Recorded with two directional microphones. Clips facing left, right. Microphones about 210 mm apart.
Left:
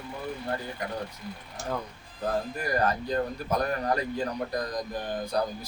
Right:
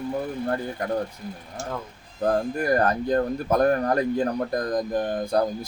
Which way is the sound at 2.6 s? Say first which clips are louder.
Right 6 dB; 50° right (ahead or behind).